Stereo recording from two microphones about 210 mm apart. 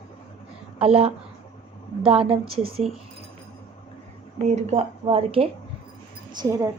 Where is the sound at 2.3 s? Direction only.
25° right (ahead or behind).